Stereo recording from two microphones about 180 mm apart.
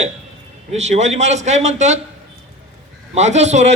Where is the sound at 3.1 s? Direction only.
40° right (ahead or behind).